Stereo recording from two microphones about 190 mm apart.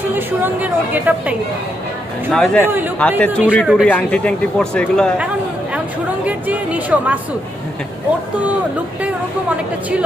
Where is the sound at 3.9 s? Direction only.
5° left (ahead or behind).